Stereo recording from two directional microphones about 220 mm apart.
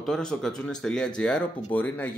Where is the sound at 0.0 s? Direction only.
5° left (ahead or behind).